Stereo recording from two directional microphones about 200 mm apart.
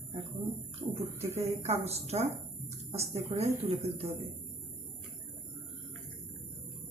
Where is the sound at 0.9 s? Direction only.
30° right (ahead or behind).